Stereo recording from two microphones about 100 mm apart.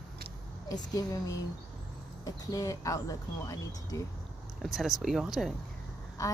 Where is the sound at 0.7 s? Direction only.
35° left (ahead or behind).